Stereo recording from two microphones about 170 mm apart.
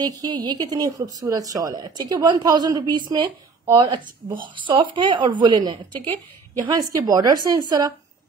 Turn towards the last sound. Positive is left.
turn(degrees=-20)  # may be behind; listen again after turning